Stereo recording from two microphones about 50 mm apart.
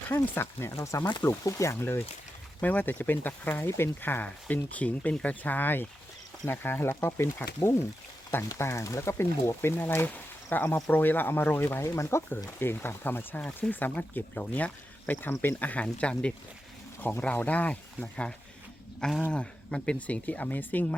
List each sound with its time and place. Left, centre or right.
0.1 s speech: left
0.7 s speech: left
1.0 s speech: left
1.5 s speech: left
1.7 s speech: left
2.6 s speech: left
6.4 s speech: left
8.3 s speech: left
9.6 s speech: left
11.8 s speech: left
12.3 s speech: left
17.0 s speech: left
19.3 s speech: left